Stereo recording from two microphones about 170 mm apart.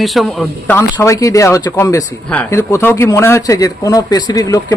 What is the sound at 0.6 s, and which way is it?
Speech, 15° left (ahead or behind).